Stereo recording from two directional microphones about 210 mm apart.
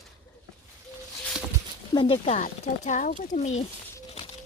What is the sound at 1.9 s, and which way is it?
Speech, 25° left (ahead or behind).